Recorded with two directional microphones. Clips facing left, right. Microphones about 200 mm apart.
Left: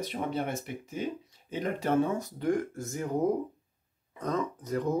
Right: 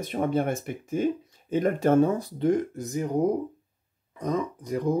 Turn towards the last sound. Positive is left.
turn(degrees=-10)  # may be behind; listen again after turning